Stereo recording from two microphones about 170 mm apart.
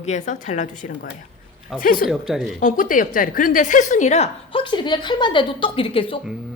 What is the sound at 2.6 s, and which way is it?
A woman's voice, 50° left (ahead or behind).